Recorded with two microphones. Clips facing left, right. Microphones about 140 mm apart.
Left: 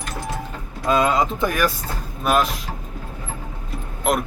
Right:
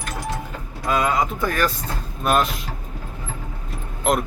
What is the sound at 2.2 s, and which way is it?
Speech, centre (ahead or behind).